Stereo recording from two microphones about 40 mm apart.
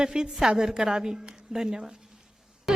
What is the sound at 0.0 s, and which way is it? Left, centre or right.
A woman's voice, centre.